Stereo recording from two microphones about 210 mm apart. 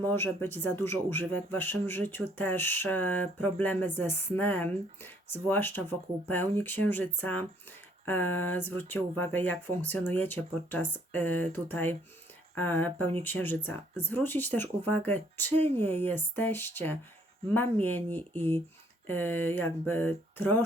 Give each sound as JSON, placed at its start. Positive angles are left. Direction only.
{"t": 0.2, "sound": "speech", "side_deg": 10}